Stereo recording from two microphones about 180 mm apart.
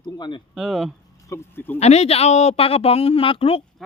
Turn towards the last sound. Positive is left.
turn(degrees=30)  # may be behind; listen again after turning